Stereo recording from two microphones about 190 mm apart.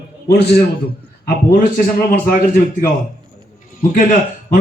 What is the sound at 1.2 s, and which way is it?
A man's voice, 50° left (ahead or behind).